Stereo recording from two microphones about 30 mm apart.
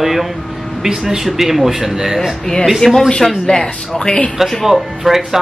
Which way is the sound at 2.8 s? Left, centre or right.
Left.